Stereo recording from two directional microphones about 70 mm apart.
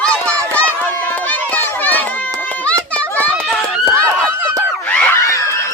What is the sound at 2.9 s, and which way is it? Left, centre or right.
Children playing, centre.